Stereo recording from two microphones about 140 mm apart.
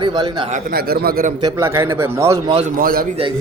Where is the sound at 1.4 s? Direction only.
25° right (ahead or behind).